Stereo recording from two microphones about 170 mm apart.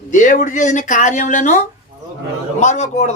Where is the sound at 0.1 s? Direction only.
50° left (ahead or behind).